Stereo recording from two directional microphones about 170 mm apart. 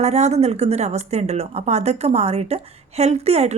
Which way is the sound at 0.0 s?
40° right (ahead or behind).